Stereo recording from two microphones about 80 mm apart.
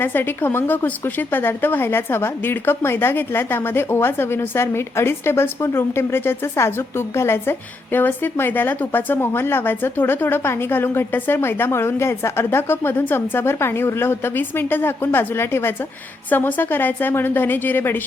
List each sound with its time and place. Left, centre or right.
0.0 s a woman's voice: left